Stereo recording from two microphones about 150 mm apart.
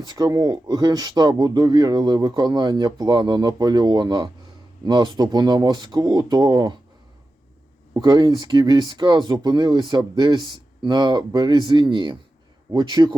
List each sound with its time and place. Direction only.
0.0 s speech: 25° right (ahead or behind)
7.9 s speech: 30° right (ahead or behind)